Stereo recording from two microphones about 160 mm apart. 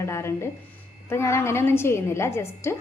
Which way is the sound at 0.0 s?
15° left (ahead or behind).